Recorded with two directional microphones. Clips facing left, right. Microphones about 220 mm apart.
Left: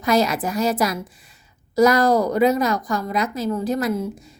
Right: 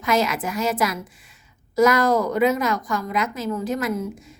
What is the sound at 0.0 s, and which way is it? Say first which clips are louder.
A woman's voice: left 3 dB; 35° left (ahead or behind).